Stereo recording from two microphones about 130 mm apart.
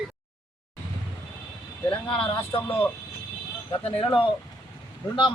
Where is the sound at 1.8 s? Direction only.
5° left (ahead or behind).